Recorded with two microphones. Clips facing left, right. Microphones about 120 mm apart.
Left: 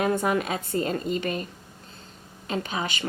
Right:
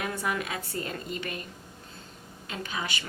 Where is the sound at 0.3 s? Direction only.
30° left (ahead or behind).